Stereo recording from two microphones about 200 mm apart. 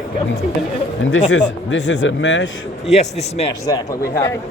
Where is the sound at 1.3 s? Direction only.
65° left (ahead or behind).